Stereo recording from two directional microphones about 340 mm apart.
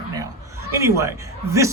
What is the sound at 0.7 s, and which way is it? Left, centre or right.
Speech, centre.